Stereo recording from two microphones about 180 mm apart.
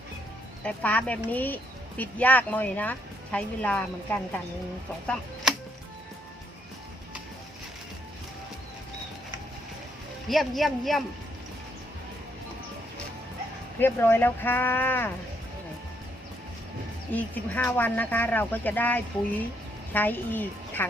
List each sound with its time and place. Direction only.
0.6 s speech: 10° left (ahead or behind)
10.2 s speech: centre (ahead or behind)
13.7 s speech: 10° left (ahead or behind)
17.1 s a woman's voice: 10° left (ahead or behind)